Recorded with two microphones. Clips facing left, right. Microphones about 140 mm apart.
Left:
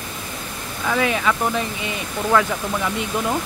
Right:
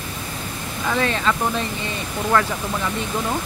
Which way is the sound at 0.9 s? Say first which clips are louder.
Left 1 dB; 10° left (ahead or behind).